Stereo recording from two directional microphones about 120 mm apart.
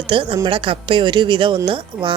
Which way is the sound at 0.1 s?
45° right (ahead or behind).